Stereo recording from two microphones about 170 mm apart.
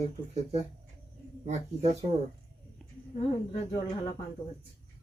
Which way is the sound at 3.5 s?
30° left (ahead or behind).